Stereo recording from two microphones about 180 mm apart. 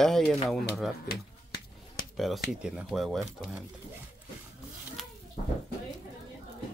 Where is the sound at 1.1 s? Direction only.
60° left (ahead or behind).